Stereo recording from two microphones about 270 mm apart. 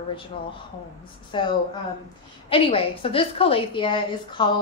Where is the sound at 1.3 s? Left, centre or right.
Centre.